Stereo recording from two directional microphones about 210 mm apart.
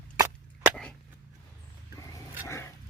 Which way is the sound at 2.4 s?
15° left (ahead or behind).